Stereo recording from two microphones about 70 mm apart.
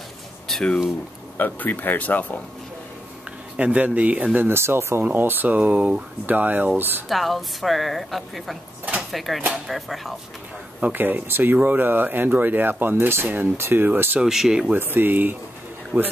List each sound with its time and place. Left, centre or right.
1.4 s speech: left
3.5 s speech: centre
4.5 s speech: right
7.1 s a woman's voice: centre
10.8 s speech: right
14.2 s speech: centre
14.8 s speech: right